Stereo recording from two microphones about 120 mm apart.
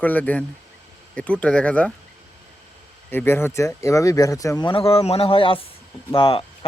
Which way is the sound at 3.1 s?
20° left (ahead or behind).